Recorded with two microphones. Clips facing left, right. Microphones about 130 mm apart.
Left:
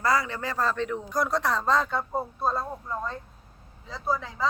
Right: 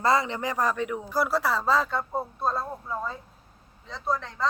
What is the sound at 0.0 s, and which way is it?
Speech, 25° right (ahead or behind).